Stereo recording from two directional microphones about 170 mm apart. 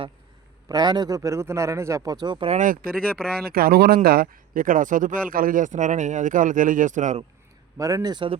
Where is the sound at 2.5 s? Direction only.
50° right (ahead or behind).